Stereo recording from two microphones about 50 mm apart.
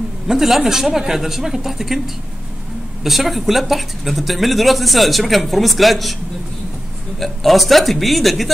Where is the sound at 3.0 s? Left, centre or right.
Centre.